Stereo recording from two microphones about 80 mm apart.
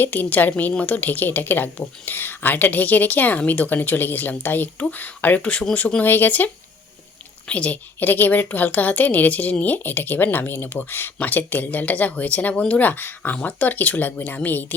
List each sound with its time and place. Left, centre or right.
0.0 s speech: left